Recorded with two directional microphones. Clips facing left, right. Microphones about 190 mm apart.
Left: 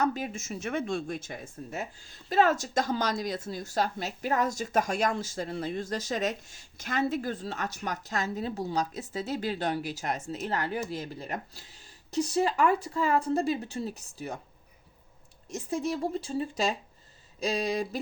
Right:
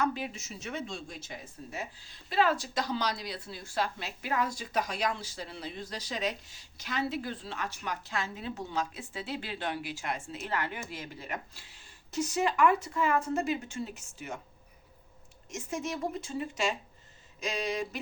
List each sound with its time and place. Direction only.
0.0 s speech: 45° left (ahead or behind)
15.4 s speech: 35° left (ahead or behind)